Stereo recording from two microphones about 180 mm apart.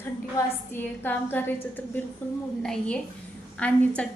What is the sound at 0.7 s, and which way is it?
A woman's voice, 10° left (ahead or behind).